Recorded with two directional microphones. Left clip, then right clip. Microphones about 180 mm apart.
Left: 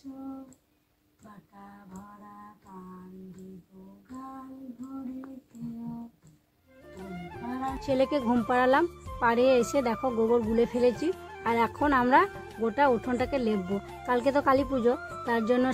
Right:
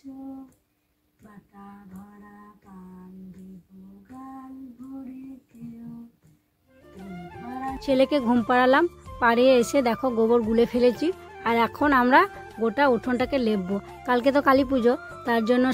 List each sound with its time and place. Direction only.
7.0 s music: centre (ahead or behind)
7.8 s speech: 25° right (ahead or behind)
8.8 s music: centre (ahead or behind)
9.2 s speech: 25° right (ahead or behind)
11.1 s music: centre (ahead or behind)
11.4 s speech: 20° right (ahead or behind)
12.3 s music: centre (ahead or behind)
12.6 s speech: 20° right (ahead or behind)
15.0 s music: centre (ahead or behind)
15.2 s speech: 20° right (ahead or behind)